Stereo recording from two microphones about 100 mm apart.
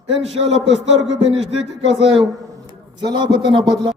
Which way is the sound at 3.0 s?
45° right (ahead or behind).